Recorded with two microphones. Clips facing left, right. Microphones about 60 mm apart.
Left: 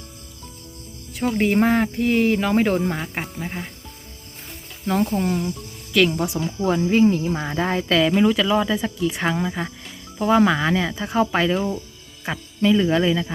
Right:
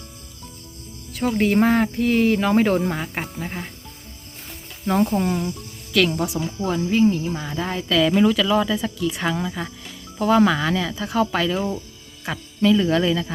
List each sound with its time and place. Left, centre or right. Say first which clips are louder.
1.1 s speech: even; centre
4.9 s speech: right 1 dB; centre
5.9 s speech: left 1 dB; centre
6.7 s speech: left 2 dB; left
8.1 s speech: even; centre
11.5 s speech: left 1 dB; centre
12.2 s speech: right 1 dB; centre